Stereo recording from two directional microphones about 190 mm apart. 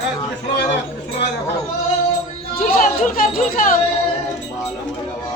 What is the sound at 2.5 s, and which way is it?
Speech, 45° left (ahead or behind).